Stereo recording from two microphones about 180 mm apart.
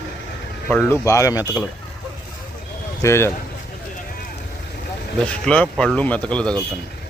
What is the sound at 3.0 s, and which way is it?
Speech, 15° left (ahead or behind).